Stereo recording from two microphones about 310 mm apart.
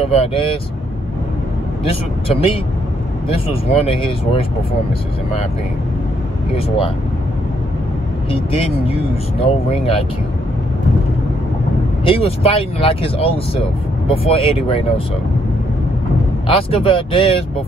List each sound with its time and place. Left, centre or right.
0.0 s speech: centre
3.3 s speech: centre
8.3 s speech: centre
12.0 s speech: centre
16.4 s speech: centre